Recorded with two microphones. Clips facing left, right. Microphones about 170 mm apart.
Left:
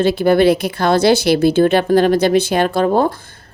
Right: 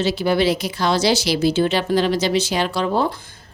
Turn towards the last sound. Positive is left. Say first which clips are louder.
# left 6 dB
turn(degrees=50)  # may be behind; listen again after turning